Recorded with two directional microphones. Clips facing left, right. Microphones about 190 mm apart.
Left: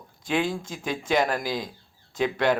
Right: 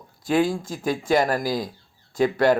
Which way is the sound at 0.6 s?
45° right (ahead or behind).